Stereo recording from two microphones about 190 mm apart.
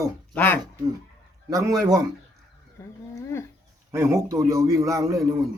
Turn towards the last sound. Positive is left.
turn(degrees=-15)  # may be behind; listen again after turning